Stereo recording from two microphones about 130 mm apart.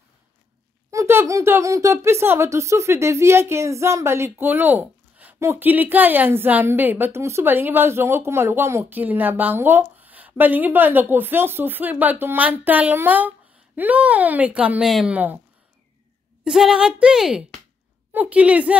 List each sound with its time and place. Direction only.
0.9 s speech: 20° right (ahead or behind)
16.4 s speech: 5° right (ahead or behind)